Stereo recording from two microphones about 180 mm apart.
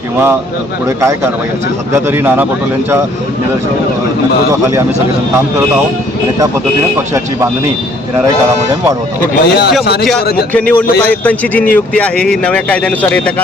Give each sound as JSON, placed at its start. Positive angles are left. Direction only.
{"t": 1.9, "sound": "speech", "side_deg": -10}
{"t": 9.2, "sound": "speech", "side_deg": 60}
{"t": 10.0, "sound": "a man's voice", "side_deg": 0}